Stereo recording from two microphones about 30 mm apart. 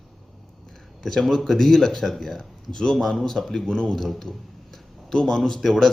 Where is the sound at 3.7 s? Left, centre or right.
Left.